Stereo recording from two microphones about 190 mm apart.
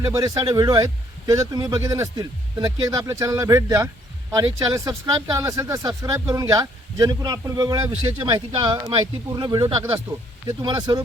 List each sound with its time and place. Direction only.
0.0 s speech: 20° right (ahead or behind)